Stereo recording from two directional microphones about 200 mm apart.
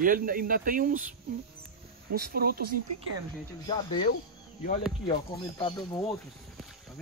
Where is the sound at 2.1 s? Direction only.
50° right (ahead or behind).